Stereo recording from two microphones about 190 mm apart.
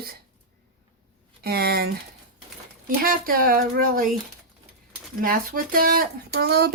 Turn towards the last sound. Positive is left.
turn(degrees=-55)  # may be behind; listen again after turning